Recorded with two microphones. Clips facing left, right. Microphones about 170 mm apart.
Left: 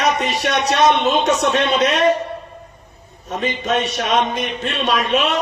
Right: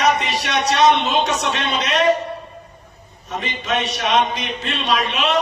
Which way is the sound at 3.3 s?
50° left (ahead or behind).